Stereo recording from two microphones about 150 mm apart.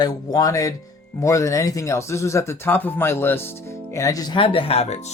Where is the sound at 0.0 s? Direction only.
25° left (ahead or behind).